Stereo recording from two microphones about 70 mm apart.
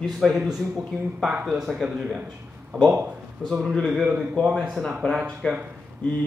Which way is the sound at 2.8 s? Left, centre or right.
Centre.